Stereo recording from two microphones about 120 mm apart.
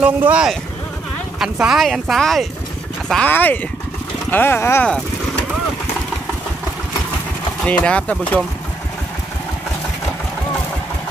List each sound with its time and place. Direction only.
0.0 s speech: 10° right (ahead or behind); by 4.8 s 20° left (ahead or behind)
7.6 s speech: 10° left (ahead or behind)